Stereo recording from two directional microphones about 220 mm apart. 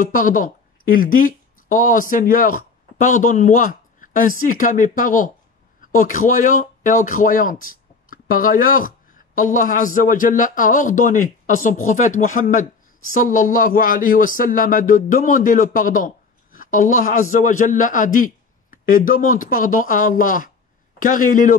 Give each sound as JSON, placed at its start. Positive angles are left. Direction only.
{"t": 0.0, "sound": "speech", "side_deg": 35}